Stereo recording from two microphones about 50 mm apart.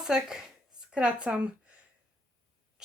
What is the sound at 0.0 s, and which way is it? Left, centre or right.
Speech, centre.